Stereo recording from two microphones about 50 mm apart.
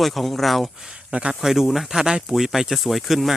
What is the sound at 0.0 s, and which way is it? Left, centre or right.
Speech, centre.